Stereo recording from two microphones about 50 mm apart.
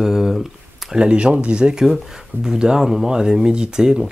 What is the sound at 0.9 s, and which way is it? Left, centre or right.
Speech, centre.